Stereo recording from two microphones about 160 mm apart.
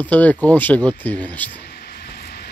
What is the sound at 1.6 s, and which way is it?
Vehicle, 80° left.